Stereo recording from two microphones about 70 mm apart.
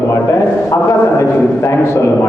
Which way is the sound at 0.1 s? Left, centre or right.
Left.